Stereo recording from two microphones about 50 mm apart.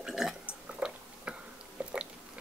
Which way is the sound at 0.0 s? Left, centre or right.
Centre.